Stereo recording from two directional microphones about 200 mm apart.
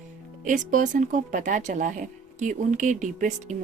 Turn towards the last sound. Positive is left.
turn(degrees=-40)  # may be behind; listen again after turning